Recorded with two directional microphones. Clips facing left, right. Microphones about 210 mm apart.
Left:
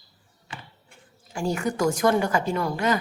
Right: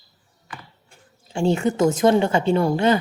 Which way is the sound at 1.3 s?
25° right (ahead or behind).